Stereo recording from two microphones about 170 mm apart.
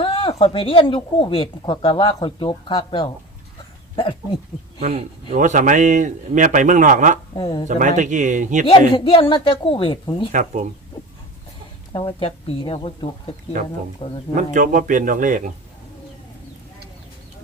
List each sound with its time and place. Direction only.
0.0 s speech: 35° left (ahead or behind)
4.8 s speech: 40° right (ahead or behind)
7.3 s a woman's voice: 25° left (ahead or behind)
7.7 s speech: 45° right (ahead or behind)
9.0 s a woman's voice: 30° left (ahead or behind)
10.3 s speech: 45° right (ahead or behind)
11.9 s speech: 30° left (ahead or behind)
14.3 s speech: 50° right (ahead or behind)